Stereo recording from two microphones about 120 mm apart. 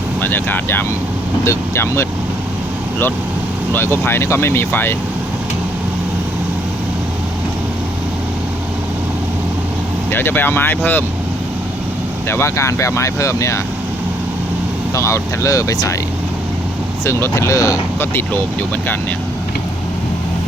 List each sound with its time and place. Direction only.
0.2 s speech: 15° left (ahead or behind)
3.8 s speech: 20° left (ahead or behind)
10.1 s speech: 15° left (ahead or behind)
12.3 s speech: 20° left (ahead or behind)
14.9 s speech: 25° left (ahead or behind)
17.1 s speech: 20° left (ahead or behind)